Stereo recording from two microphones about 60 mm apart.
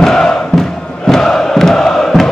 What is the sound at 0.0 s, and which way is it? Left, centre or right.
Chant, centre.